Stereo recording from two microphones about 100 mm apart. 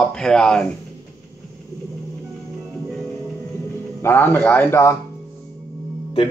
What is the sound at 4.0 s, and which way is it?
A man's voice, 20° left (ahead or behind).